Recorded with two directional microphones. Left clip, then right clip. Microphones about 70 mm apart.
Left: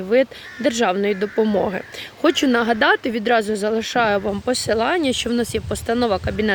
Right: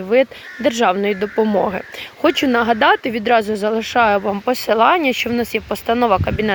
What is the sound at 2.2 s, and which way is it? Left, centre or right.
Speech, left.